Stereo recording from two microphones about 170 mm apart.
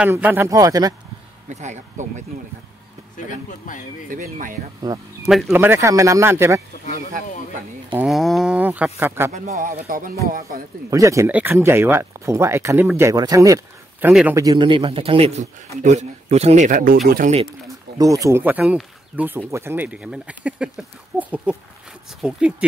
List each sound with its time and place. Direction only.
0.0 s speech: 10° right (ahead or behind)
1.5 s speech: 45° right (ahead or behind)
3.3 s speech: 50° left (ahead or behind)
4.1 s speech: 50° right (ahead or behind)
4.9 s speech: 20° right (ahead or behind)
5.2 s speech: centre (ahead or behind)
5.5 s speech: 10° right (ahead or behind)
7.9 s speech: 5° right (ahead or behind)
9.3 s speech: 45° right (ahead or behind)
10.9 s a man's voice: 20° right (ahead or behind); by 17.4 s 50° right (ahead or behind)
17.9 s speech: 20° right (ahead or behind)